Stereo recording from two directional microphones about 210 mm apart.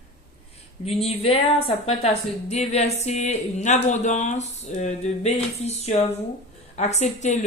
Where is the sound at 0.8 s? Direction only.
30° left (ahead or behind).